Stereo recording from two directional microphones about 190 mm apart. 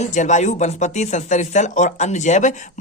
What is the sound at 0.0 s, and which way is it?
Speech, 40° left (ahead or behind).